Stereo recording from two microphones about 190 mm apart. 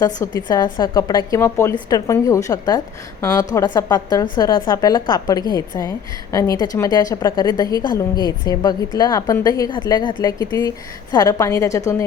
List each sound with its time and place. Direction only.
0.0 s a woman's voice: 20° left (ahead or behind)